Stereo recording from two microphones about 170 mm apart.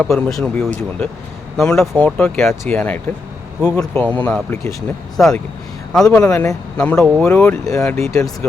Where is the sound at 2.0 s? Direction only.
10° left (ahead or behind).